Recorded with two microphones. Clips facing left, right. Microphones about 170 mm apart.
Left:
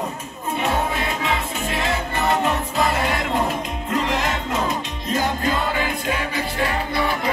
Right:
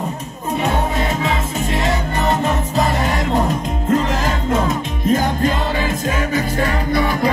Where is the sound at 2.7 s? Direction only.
40° right (ahead or behind).